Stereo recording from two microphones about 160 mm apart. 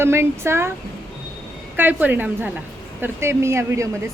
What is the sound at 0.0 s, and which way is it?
Speech, 15° right (ahead or behind).